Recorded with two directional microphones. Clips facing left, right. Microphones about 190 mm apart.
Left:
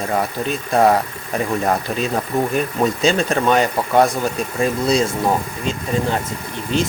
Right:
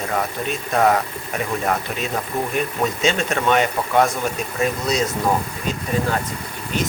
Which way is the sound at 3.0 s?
35° left (ahead or behind).